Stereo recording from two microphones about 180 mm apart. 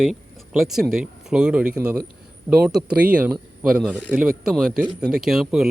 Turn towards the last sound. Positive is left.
turn(degrees=-5)  # may be behind; listen again after turning